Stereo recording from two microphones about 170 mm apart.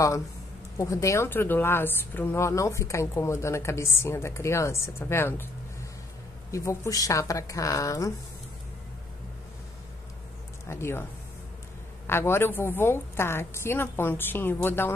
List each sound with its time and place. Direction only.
0.7 s a woman's voice: 15° left (ahead or behind)
10.7 s a woman's voice: 15° left (ahead or behind)
12.1 s a woman's voice: 15° left (ahead or behind)